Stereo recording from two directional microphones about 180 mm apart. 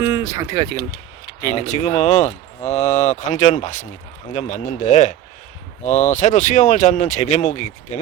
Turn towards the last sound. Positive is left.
turn(degrees=40)  # may be behind; listen again after turning